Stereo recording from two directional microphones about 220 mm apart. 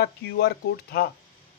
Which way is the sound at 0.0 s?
50° left (ahead or behind).